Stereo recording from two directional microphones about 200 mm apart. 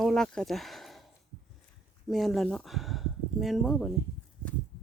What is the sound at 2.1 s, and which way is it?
Speech, centre (ahead or behind).